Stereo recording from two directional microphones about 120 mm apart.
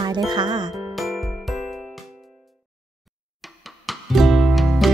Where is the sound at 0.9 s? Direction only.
Centre (ahead or behind).